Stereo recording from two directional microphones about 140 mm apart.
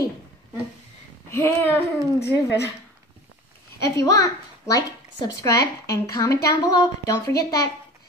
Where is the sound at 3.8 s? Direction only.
25° left (ahead or behind).